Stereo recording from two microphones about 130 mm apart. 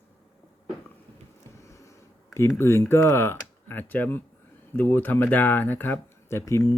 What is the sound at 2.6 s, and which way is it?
Speech, 20° left (ahead or behind).